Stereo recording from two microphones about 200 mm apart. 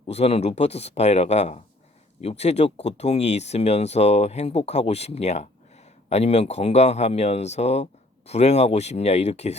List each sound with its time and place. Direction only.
0.0 s speech: 30° left (ahead or behind)